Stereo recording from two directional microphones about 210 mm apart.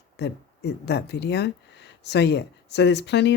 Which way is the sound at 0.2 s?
55° left (ahead or behind).